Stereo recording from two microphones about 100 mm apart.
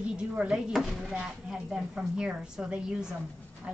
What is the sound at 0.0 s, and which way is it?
Speech, 10° right (ahead or behind).